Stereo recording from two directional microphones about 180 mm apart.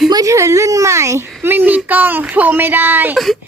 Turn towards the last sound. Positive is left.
turn(degrees=-10)  # may be behind; listen again after turning